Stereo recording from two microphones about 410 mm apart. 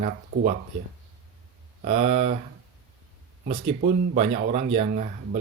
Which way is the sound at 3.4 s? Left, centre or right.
Centre.